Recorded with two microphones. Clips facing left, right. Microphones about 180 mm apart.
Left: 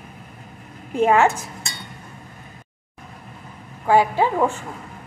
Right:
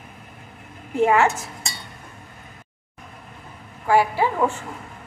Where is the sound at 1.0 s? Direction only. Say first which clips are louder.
Left 1 dB; 20° left (ahead or behind).